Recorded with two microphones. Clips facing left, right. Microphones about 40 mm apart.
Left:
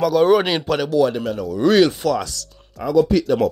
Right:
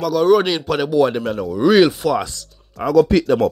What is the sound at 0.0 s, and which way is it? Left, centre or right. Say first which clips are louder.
Speech: even; centre.